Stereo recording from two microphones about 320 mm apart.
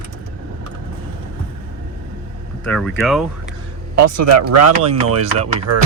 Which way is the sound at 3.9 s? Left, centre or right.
Right.